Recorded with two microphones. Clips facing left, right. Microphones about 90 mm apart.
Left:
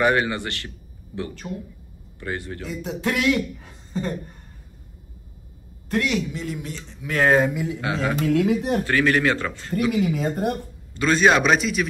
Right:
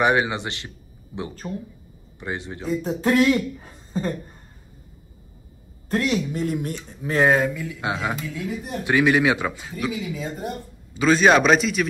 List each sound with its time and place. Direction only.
0.0 s a man's voice: 15° right (ahead or behind)
2.6 s speech: 35° right (ahead or behind)
5.9 s speech: 35° right (ahead or behind)
7.2 s a man's voice: centre (ahead or behind)
7.5 s speech: 20° left (ahead or behind)
7.8 s a man's voice: 25° right (ahead or behind)
8.2 s speech: 70° left (ahead or behind)
8.8 s a man's voice: 15° right (ahead or behind)
9.9 s speech: 55° left (ahead or behind)
11.0 s a man's voice: centre (ahead or behind)